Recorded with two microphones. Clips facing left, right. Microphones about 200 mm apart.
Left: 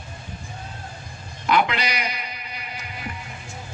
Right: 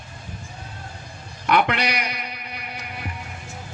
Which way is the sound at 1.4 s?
60° right (ahead or behind).